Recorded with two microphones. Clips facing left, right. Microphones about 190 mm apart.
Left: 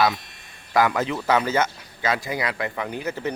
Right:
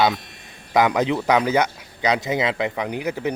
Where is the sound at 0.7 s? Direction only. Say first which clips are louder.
Right 3 dB; 20° right (ahead or behind).